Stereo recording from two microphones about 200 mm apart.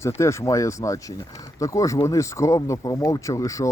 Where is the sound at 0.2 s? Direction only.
15° left (ahead or behind).